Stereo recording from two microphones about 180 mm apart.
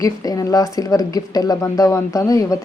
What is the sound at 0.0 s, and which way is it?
A woman's voice, 20° left (ahead or behind).